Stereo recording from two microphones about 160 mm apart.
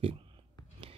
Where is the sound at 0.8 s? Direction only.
35° right (ahead or behind).